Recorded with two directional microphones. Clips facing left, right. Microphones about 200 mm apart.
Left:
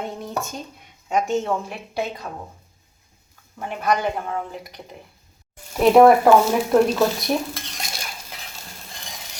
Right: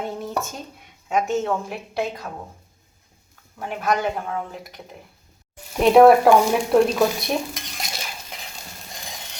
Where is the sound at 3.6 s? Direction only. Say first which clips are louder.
Left 1 dB; centre (ahead or behind).